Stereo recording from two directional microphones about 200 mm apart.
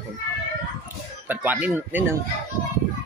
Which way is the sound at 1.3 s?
10° right (ahead or behind).